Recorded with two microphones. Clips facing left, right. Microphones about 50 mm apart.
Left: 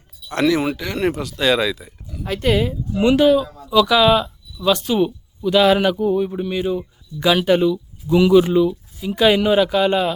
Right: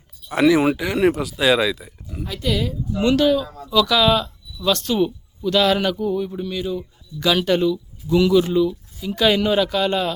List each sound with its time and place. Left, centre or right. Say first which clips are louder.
0.3 s speech: right 2 dB; centre
2.2 s speech: left 5 dB; left
2.9 s speech: left 3 dB; centre